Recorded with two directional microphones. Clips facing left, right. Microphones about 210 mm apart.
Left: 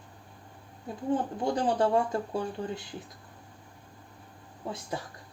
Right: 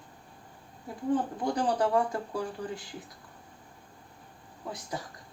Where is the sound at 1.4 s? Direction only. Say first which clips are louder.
Left 1 dB; 25° left (ahead or behind).